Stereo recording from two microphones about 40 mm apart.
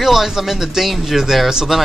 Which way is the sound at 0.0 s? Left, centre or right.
Centre.